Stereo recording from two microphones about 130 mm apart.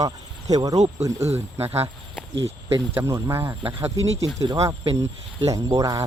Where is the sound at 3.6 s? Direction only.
40° right (ahead or behind).